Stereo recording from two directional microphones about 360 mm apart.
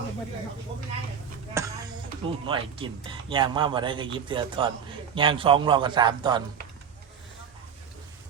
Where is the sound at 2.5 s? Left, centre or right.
Centre.